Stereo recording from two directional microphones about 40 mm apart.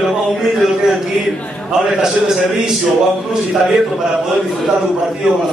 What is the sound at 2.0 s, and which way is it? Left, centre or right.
A man's voice, centre.